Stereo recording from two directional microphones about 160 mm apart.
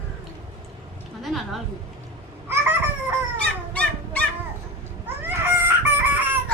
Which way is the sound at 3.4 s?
10° left (ahead or behind).